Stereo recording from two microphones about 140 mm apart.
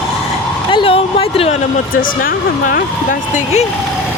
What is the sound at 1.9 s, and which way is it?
Speech, 90° left.